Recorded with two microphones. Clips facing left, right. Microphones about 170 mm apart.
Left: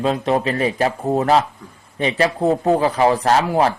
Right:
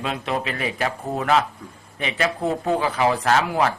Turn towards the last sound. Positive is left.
turn(degrees=35)  # may be behind; listen again after turning